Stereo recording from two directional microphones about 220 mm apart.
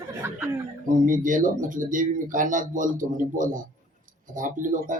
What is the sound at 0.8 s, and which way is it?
Speech, 35° right (ahead or behind).